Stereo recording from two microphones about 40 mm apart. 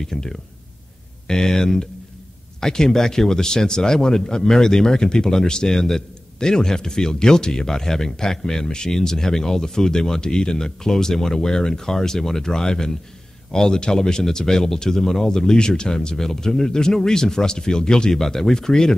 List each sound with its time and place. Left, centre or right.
0.0 s speech: centre